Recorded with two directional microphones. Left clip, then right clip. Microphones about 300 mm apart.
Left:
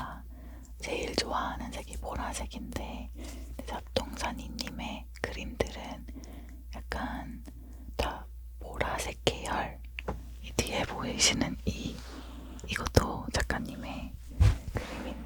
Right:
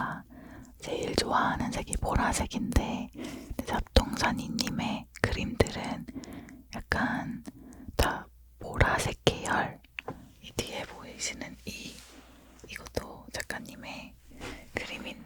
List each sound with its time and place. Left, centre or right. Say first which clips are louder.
0.8 s speech: right 2 dB; right
7.9 s whispering: right 5 dB; right
10.7 s whispering: left 5 dB; centre
10.9 s whispering: left 10 dB; left
13.6 s whispering: left 2 dB; centre